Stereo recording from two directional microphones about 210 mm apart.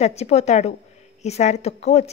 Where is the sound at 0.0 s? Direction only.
30° left (ahead or behind).